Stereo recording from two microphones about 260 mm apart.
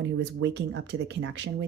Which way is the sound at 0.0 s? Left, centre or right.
Right.